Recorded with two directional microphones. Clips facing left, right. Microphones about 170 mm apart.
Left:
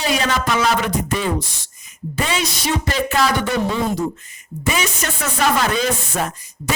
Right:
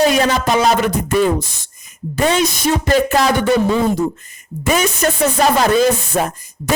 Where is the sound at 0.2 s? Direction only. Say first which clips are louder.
Right 5 dB; 40° right (ahead or behind).